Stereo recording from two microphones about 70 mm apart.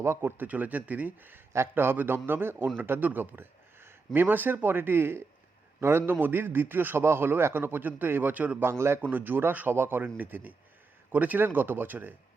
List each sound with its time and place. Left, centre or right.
0.0 s a man's voice: right